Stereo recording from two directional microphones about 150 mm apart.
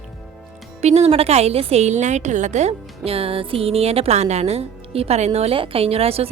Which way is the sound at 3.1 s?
40° right (ahead or behind).